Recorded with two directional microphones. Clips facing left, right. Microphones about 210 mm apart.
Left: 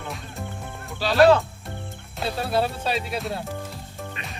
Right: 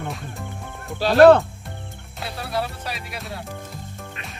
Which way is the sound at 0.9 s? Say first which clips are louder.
Right 5 dB; 55° right (ahead or behind).